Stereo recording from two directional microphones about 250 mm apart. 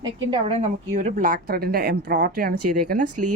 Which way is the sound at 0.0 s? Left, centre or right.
Centre.